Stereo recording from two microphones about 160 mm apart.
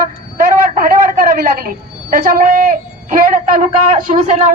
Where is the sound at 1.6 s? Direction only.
65° right (ahead or behind).